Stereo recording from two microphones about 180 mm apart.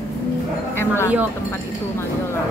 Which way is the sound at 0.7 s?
15° left (ahead or behind).